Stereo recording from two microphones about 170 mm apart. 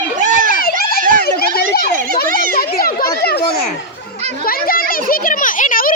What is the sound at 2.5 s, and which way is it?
Children playing, 60° left (ahead or behind).